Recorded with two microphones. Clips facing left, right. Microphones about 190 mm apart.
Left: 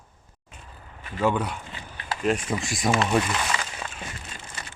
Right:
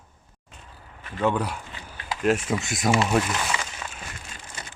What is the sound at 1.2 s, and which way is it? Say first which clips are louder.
Speech: even; centre (ahead or behind).